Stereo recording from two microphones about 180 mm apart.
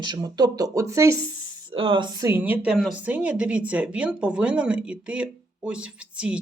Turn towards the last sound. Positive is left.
turn(degrees=-5)  # may be behind; listen again after turning